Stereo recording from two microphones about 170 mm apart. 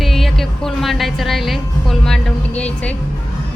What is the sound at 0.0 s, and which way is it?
Music, centre (ahead or behind).